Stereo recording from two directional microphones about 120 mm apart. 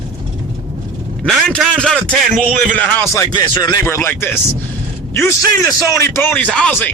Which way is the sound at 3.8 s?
20° left (ahead or behind).